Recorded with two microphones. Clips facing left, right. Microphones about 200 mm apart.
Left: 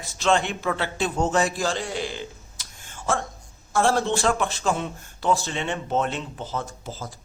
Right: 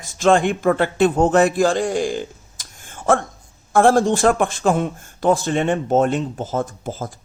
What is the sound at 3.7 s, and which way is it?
A man's voice, 55° right (ahead or behind).